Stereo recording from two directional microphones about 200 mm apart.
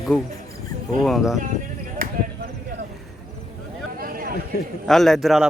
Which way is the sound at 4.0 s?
50° right (ahead or behind).